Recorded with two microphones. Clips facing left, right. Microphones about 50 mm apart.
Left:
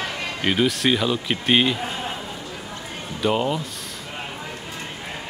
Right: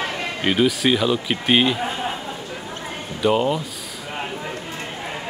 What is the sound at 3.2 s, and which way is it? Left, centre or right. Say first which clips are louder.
Speech: right 3 dB; centre.